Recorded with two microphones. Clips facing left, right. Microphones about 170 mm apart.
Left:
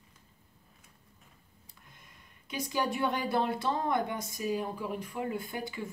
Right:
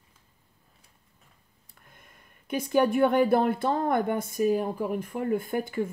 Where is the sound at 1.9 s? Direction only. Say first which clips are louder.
Right 2 dB; 55° right (ahead or behind).